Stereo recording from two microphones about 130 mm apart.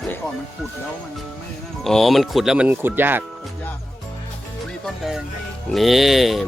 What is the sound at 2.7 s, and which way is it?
Speech, 15° right (ahead or behind).